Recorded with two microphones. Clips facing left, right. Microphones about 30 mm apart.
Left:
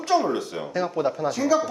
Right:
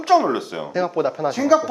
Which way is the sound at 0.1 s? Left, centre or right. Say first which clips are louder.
Right 5 dB; centre.